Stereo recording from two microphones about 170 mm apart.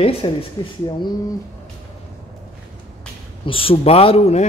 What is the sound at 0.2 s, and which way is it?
Speech, 30° left (ahead or behind).